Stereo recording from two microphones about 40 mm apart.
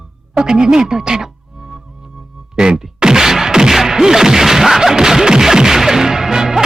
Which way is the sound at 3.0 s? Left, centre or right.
Centre.